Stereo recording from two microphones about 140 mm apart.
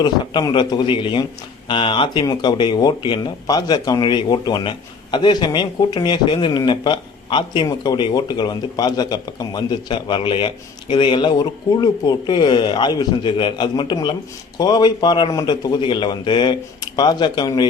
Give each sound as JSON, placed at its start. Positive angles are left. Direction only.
{"t": 0.0, "sound": "speech", "side_deg": 30}